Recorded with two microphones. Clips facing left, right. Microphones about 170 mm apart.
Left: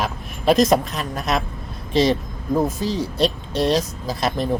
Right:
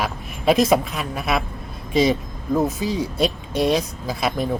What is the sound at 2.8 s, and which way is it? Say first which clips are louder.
Speech: left 1 dB; 5° right (ahead or behind).